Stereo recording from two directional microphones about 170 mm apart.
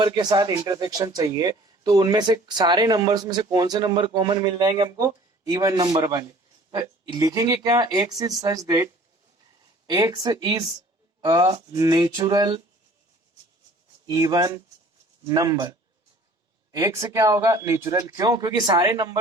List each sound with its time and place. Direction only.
0.0 s speech: 25° right (ahead or behind)
14.1 s speech: 20° right (ahead or behind)
16.7 s speech: 20° right (ahead or behind)